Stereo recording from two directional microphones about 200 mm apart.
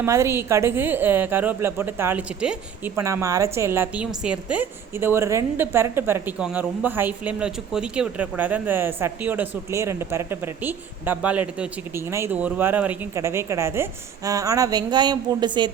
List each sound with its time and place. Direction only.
0.0 s a woman's voice: 15° right (ahead or behind)